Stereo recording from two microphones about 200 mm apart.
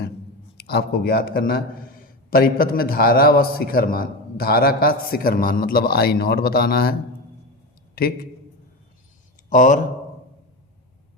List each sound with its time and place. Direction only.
0.5 s a man's voice: 55° left (ahead or behind)
7.9 s a man's voice: 50° left (ahead or behind)
9.5 s speech: 40° left (ahead or behind)